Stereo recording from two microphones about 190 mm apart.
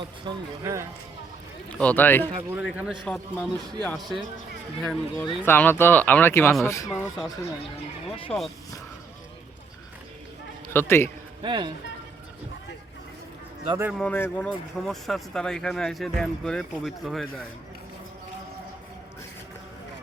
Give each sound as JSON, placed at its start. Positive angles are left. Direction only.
{"t": 0.3, "sound": "speech", "side_deg": -15}
{"t": 1.8, "sound": "speech", "side_deg": 10}
{"t": 2.6, "sound": "speech", "side_deg": -5}
{"t": 6.8, "sound": "speech", "side_deg": -5}
{"t": 8.3, "sound": "speech", "side_deg": 5}
{"t": 10.7, "sound": "a man's voice", "side_deg": 10}
{"t": 11.4, "sound": "speech", "side_deg": -25}
{"t": 13.7, "sound": "speech", "side_deg": -15}
{"t": 14.0, "sound": "speech", "side_deg": 10}